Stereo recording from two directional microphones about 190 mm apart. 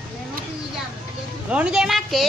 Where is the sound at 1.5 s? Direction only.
5° right (ahead or behind).